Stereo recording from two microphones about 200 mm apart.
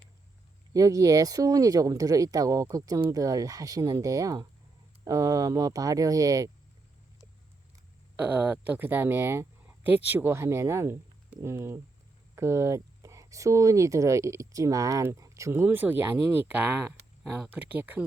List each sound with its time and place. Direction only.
0.7 s speech: 15° right (ahead or behind)
8.2 s speech: 10° right (ahead or behind)